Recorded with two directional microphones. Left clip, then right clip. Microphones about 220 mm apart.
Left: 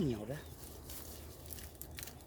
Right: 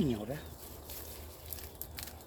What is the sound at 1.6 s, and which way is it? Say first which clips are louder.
Biting: right 4 dB; 10° left (ahead or behind).